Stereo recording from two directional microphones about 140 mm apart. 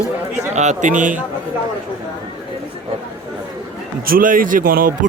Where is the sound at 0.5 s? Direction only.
55° right (ahead or behind).